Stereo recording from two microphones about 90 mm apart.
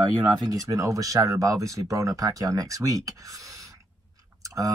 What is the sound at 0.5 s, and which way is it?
Speech, 40° right (ahead or behind).